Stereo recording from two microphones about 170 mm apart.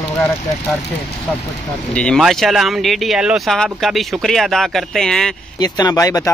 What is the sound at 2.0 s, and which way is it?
Speech, 5° left (ahead or behind).